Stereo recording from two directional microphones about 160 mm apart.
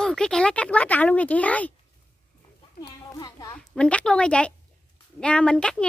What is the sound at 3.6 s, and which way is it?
A woman's voice, 5° left (ahead or behind).